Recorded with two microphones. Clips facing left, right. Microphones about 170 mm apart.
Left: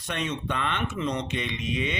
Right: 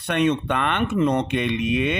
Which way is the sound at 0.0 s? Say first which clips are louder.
Right 10 dB; 60° right (ahead or behind).